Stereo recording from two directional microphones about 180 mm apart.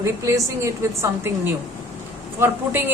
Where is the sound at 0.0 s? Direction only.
15° right (ahead or behind).